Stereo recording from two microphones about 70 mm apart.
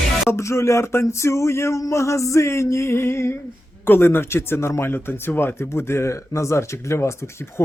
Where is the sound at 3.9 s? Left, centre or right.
Left.